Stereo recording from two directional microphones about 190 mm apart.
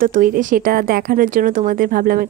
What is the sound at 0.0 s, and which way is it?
Speech, 45° right (ahead or behind).